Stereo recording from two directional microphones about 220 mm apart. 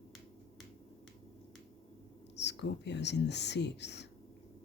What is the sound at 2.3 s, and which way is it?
Speech, 50° left (ahead or behind).